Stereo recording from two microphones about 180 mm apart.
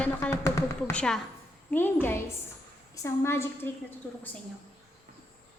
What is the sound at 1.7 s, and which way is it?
A woman's voice, 10° left (ahead or behind).